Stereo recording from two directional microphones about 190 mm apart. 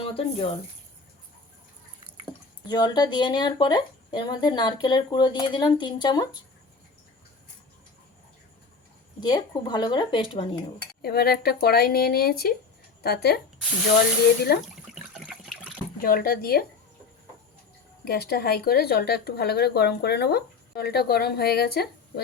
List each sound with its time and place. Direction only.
0.0 s speech: 30° left (ahead or behind)
2.6 s speech: 20° left (ahead or behind)
9.2 s speech: 20° left (ahead or behind)
11.0 s speech: 55° left (ahead or behind)
14.5 s speech: 55° left (ahead or behind)
15.1 s water: centre (ahead or behind)
16.0 s speech: 50° left (ahead or behind)
18.0 s speech: 55° left (ahead or behind)